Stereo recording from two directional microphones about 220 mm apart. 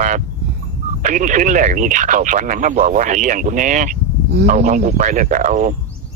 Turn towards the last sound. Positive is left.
turn(degrees=-35)  # may be behind; listen again after turning